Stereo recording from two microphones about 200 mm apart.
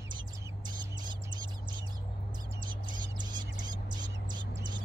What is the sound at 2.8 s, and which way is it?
Bird, 20° right (ahead or behind).